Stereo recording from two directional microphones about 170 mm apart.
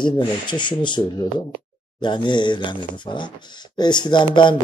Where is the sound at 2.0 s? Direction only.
25° left (ahead or behind).